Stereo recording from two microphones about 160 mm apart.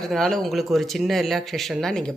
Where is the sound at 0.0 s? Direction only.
Centre (ahead or behind).